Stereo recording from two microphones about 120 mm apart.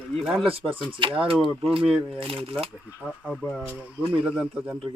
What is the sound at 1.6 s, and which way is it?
Speech, 55° right (ahead or behind).